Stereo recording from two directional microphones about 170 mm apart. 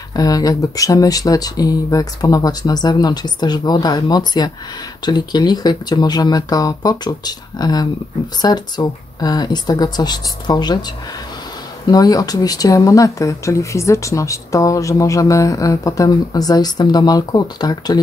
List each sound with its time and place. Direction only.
0.1 s speech: 20° left (ahead or behind)
11.9 s speech: 20° left (ahead or behind)